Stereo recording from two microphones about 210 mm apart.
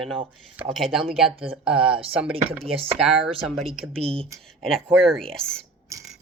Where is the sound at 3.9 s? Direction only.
25° right (ahead or behind).